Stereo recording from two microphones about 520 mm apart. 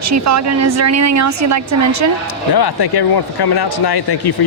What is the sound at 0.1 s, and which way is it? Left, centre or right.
A woman's voice, right.